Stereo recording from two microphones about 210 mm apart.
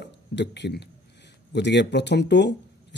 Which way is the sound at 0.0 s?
55° left (ahead or behind).